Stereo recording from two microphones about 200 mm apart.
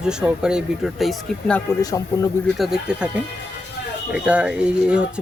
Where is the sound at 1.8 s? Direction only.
15° left (ahead or behind).